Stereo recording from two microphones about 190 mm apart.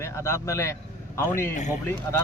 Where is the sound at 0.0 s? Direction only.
15° left (ahead or behind).